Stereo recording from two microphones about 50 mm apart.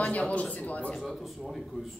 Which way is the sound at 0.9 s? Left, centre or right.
Centre.